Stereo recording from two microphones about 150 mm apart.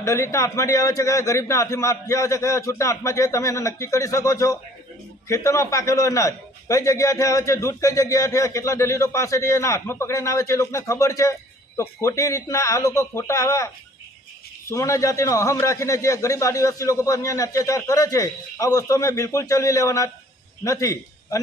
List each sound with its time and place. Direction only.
0.0 s a man's voice: 20° left (ahead or behind)
14.7 s a man's voice: 20° left (ahead or behind)